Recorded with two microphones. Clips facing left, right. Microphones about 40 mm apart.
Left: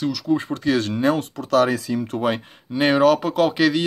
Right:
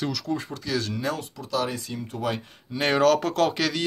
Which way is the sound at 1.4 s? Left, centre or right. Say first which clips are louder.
Left 10 dB; left.